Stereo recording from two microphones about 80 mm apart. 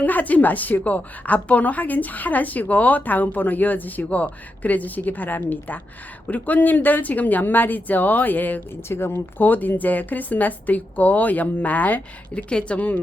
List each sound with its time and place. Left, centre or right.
0.0 s speech: left